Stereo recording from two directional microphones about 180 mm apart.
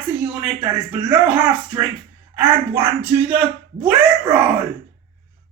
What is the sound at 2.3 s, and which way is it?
Speech, 10° right (ahead or behind).